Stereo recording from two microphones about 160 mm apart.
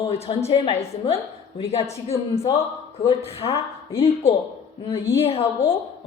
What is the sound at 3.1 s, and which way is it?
A woman's voice, 35° left (ahead or behind).